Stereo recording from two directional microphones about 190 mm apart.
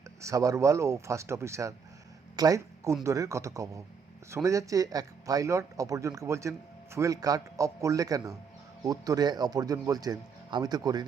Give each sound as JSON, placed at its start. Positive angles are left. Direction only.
{"t": 0.2, "sound": "speech", "side_deg": -15}